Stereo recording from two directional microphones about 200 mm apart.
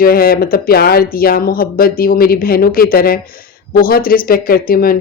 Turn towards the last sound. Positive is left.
turn(degrees=45)  # may be behind; listen again after turning